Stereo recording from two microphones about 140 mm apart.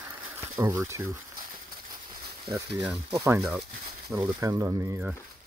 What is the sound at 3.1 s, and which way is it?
Speech, 20° right (ahead or behind).